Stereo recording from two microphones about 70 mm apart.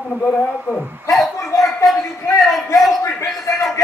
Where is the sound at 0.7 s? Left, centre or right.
Centre.